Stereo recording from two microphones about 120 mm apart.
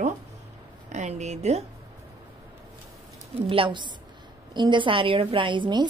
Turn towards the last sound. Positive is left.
turn(degrees=-40)  # may be behind; listen again after turning